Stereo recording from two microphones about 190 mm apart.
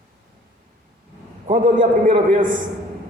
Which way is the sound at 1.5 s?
45° right (ahead or behind).